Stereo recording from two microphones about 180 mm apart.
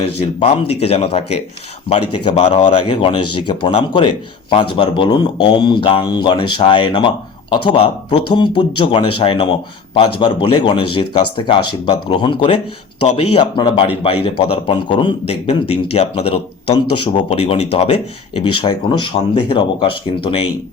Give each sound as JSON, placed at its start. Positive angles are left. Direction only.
{"t": 0.3, "sound": "a man's voice", "side_deg": 30}
{"t": 2.7, "sound": "a man's voice", "side_deg": 25}